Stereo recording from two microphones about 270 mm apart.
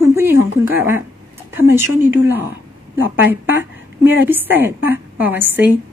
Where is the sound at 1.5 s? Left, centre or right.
Centre.